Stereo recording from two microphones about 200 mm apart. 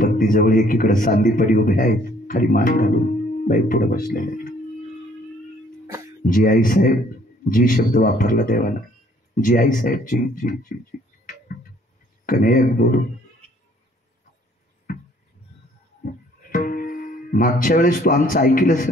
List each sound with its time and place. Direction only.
0.0 s speech: 45° left (ahead or behind)
6.2 s speech: 45° left (ahead or behind)
12.3 s speech: 45° left (ahead or behind)
16.5 s speech: 45° left (ahead or behind)